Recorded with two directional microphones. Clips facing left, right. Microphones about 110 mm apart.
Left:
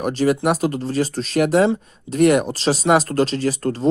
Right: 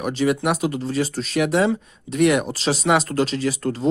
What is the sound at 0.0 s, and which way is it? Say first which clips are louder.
Speech: left 2 dB; 35° left (ahead or behind).